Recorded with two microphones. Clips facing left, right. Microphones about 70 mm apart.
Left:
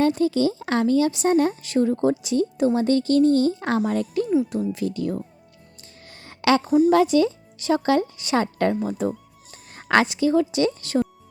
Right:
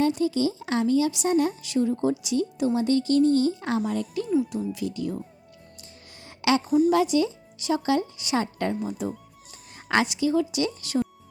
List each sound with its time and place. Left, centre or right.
0.0 s speech: left
6.2 s speech: left